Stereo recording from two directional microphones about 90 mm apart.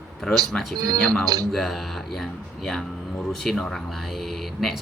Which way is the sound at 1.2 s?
45° right (ahead or behind).